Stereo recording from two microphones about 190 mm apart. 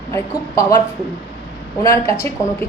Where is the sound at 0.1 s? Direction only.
15° left (ahead or behind).